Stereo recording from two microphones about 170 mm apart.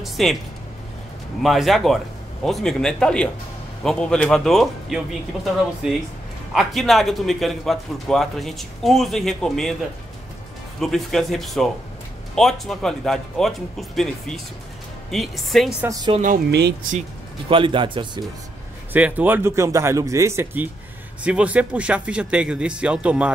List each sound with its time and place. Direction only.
0.0 s a man's voice: centre (ahead or behind)
1.4 s a man's voice: centre (ahead or behind)
10.8 s a man's voice: centre (ahead or behind)
16.4 s speech: 75° right (ahead or behind)
17.5 s a man's voice: 30° right (ahead or behind)
18.9 s speech: 10° right (ahead or behind)